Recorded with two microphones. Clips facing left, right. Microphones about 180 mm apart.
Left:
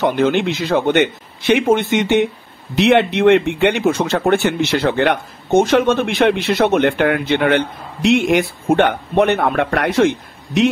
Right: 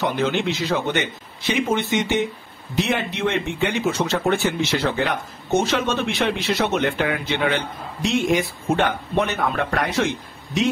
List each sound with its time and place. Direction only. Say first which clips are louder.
0.0 s speech: left 6 dB; 55° left (ahead or behind)